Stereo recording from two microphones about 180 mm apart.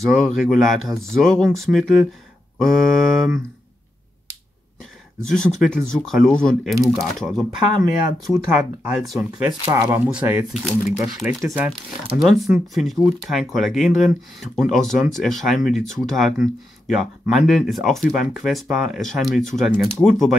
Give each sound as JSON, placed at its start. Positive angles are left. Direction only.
{"t": 0.0, "sound": "speech", "side_deg": 0}
{"t": 5.3, "sound": "speech", "side_deg": 5}
{"t": 7.7, "sound": "speech", "side_deg": -20}
{"t": 8.5, "sound": "speech", "side_deg": -10}
{"t": 9.8, "sound": "speech", "side_deg": -10}